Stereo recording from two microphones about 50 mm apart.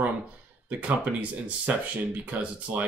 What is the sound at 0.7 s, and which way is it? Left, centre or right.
A man's voice, right.